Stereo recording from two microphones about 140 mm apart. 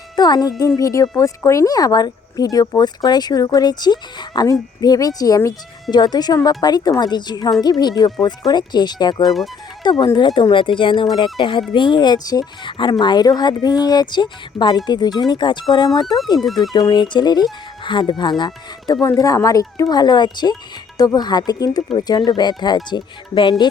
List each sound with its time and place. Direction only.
0.2 s speech: 30° left (ahead or behind)
16.5 s speech: centre (ahead or behind)
16.7 s speech: 30° left (ahead or behind)